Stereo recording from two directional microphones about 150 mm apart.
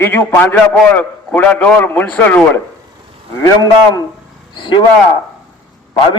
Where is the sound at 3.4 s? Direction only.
25° left (ahead or behind).